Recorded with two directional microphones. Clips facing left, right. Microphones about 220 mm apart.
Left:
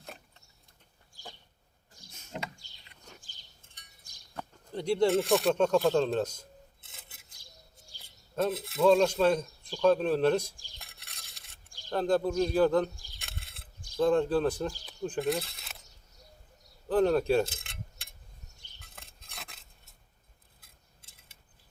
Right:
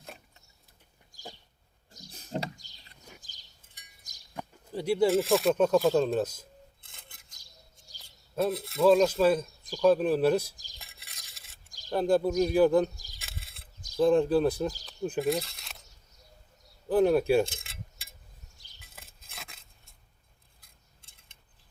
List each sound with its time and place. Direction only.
0.0 s a sound: centre (ahead or behind)
1.9 s a sound: 35° right (ahead or behind)
4.4 s speech: 5° right (ahead or behind)
6.8 s dishes: 5° left (ahead or behind)
8.4 s speech: centre (ahead or behind)
10.8 s stir: centre (ahead or behind)
11.9 s speech: 10° right (ahead or behind)
13.1 s a sound: centre (ahead or behind)
13.9 s speech: 10° right (ahead or behind)
16.9 s speech: 10° right (ahead or behind)
17.4 s a sound: centre (ahead or behind)
20.6 s cutlery: 5° left (ahead or behind)